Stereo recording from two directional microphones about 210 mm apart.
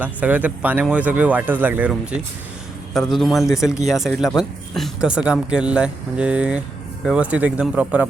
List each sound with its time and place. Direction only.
0.0 s speech: 5° right (ahead or behind)